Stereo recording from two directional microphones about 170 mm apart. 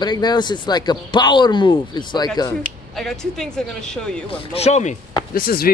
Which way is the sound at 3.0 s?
5° left (ahead or behind).